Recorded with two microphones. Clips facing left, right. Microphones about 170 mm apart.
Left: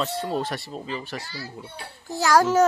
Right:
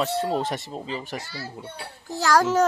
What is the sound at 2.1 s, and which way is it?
Speech, 10° left (ahead or behind).